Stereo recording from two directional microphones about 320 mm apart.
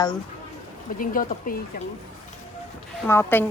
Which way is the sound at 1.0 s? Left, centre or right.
Left.